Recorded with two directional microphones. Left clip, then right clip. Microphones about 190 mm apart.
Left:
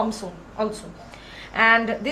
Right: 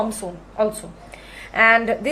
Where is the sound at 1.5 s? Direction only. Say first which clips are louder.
Right 3 dB; 45° right (ahead or behind).